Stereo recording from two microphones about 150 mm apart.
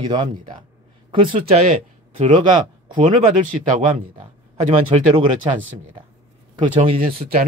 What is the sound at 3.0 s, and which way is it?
Speech, 50° right (ahead or behind).